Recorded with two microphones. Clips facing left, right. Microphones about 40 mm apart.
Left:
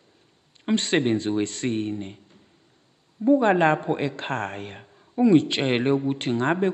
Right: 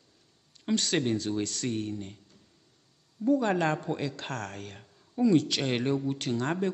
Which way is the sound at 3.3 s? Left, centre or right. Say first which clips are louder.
Left 7 dB; left.